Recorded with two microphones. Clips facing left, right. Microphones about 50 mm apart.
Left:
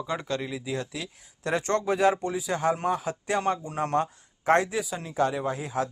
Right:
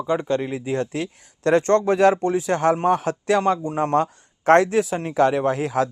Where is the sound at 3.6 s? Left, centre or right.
Right.